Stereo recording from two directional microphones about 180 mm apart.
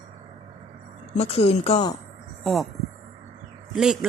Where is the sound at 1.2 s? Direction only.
35° left (ahead or behind).